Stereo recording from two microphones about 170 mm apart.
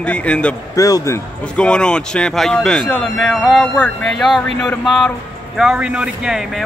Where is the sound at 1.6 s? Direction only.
5° left (ahead or behind).